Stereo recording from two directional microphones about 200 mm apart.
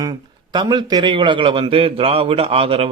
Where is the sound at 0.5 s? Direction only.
20° right (ahead or behind).